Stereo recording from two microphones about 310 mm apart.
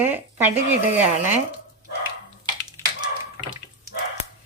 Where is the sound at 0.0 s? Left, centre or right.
Centre.